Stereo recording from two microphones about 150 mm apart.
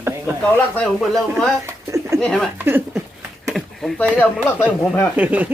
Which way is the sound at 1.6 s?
20° right (ahead or behind).